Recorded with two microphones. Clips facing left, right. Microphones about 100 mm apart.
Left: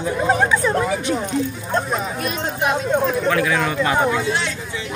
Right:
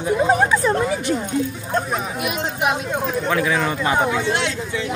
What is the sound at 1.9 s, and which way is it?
Speech, 10° right (ahead or behind).